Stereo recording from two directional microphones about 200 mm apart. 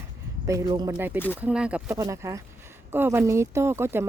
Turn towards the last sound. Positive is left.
turn(degrees=-10)  # may be behind; listen again after turning